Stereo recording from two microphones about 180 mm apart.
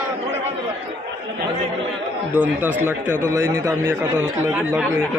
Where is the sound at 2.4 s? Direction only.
10° right (ahead or behind).